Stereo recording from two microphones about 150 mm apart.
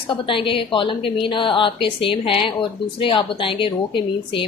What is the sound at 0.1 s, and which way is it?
A woman's voice, 35° left (ahead or behind).